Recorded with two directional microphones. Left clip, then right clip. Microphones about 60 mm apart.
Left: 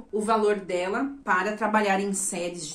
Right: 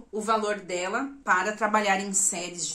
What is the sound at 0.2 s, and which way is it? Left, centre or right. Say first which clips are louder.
Speech: left 3 dB; right.